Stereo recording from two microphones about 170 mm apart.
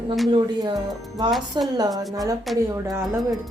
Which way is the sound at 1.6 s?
25° right (ahead or behind).